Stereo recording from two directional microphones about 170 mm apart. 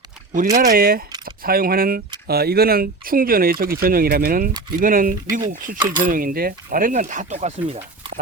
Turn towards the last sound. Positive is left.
turn(degrees=-40)  # may be behind; listen again after turning